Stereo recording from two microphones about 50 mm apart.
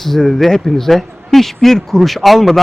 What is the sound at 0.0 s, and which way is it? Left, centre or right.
Speech, centre.